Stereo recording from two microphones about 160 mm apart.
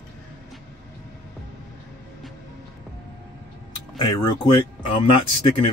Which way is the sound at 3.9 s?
25° left (ahead or behind).